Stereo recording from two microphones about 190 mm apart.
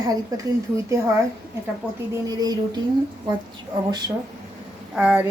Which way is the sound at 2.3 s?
20° right (ahead or behind).